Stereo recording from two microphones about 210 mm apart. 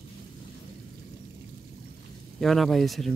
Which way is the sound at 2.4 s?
Centre (ahead or behind).